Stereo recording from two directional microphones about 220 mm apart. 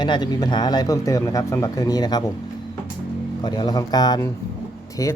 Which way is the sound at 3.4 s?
20° left (ahead or behind).